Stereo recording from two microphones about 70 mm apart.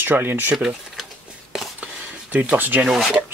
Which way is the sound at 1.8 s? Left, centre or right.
Centre.